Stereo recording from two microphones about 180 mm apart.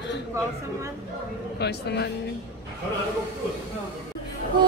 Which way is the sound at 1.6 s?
65° left (ahead or behind).